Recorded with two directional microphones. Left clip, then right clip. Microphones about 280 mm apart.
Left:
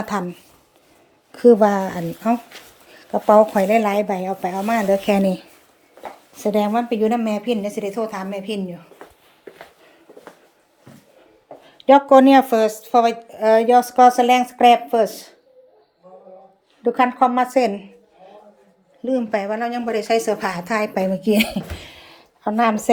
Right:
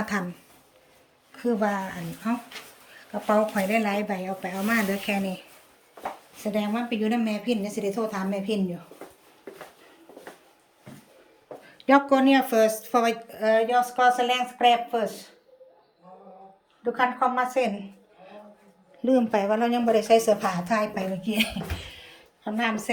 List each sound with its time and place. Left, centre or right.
1.3 s speech: centre
5.0 s speech: left; by 8.8 s centre
11.6 s speech: centre
17.2 s speech: centre
19.0 s speech: centre
21.2 s a sound: left